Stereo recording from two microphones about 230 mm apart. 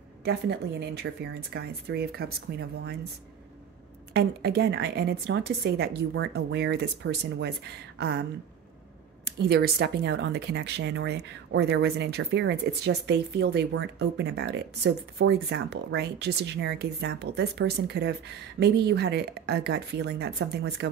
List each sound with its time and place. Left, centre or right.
0.2 s speech: right
4.1 s speech: right